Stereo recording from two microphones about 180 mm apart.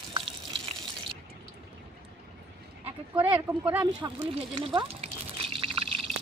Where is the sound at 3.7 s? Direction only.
10° right (ahead or behind).